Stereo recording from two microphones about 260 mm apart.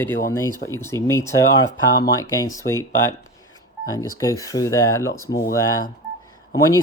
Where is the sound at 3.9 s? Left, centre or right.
Centre.